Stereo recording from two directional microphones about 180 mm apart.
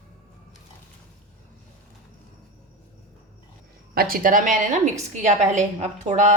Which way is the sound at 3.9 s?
55° right (ahead or behind).